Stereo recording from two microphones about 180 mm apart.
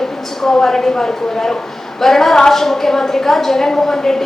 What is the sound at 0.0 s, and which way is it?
A woman's voice, centre (ahead or behind).